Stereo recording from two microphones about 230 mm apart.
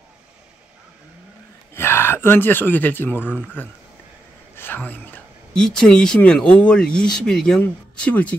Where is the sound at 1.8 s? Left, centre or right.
Centre.